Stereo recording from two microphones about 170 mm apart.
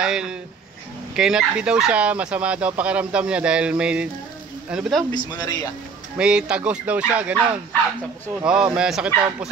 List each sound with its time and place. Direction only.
0.0 s speech: 5° right (ahead or behind)
5.1 s speech: 25° left (ahead or behind)
6.1 s speech: 5° right (ahead or behind)
8.5 s speech: 5° right (ahead or behind)